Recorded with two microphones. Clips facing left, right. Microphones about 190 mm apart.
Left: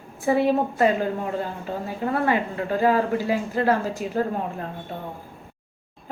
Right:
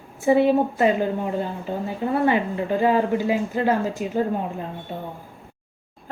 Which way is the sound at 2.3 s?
20° right (ahead or behind).